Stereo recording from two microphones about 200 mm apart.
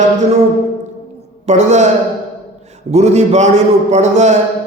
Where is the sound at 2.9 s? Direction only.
35° right (ahead or behind).